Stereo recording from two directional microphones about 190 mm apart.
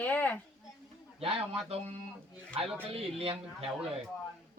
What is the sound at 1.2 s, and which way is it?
Speech, 30° right (ahead or behind).